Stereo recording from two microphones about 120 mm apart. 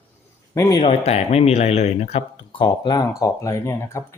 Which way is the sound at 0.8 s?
60° left (ahead or behind).